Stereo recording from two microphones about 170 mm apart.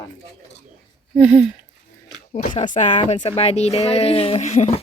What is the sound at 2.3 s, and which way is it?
Speech, 45° left (ahead or behind).